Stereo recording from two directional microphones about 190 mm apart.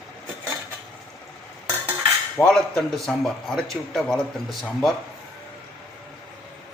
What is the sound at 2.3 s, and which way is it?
Speech, 5° left (ahead or behind).